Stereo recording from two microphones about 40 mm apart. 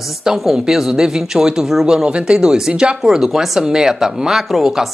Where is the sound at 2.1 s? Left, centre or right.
Right.